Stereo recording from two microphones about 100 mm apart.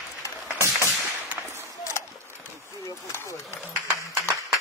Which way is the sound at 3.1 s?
25° left (ahead or behind).